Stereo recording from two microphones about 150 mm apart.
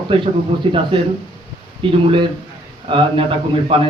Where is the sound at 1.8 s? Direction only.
35° right (ahead or behind).